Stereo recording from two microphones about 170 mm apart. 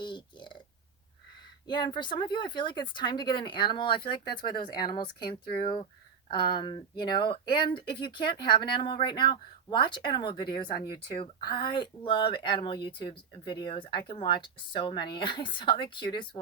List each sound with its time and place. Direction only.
0.0 s burping: 25° left (ahead or behind)
1.6 s speech: 25° left (ahead or behind)